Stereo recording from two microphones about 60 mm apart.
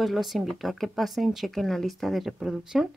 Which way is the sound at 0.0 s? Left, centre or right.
Centre.